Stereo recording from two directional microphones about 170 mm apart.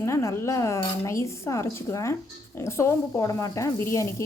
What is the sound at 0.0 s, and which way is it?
A woman's voice, 15° left (ahead or behind).